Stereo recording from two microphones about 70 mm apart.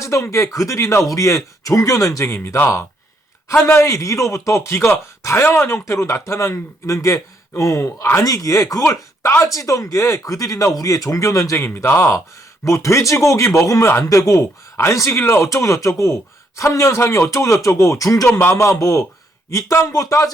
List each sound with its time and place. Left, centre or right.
0.0 s speech: left
12.6 s speech: left
14.8 s speech: left
15.4 s speech: left
18.4 s speech: left